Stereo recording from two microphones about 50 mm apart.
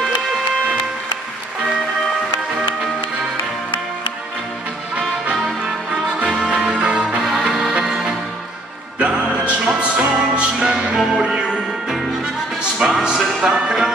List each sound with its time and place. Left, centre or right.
5.3 s music: centre
7.2 s music: centre
9.0 s music: right
12.8 s music: centre
13.2 s music: centre